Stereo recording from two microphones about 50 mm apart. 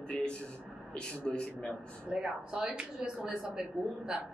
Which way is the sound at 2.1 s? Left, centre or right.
Centre.